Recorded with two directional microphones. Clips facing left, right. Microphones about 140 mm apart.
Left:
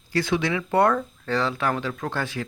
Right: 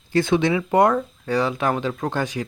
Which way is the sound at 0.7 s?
15° right (ahead or behind).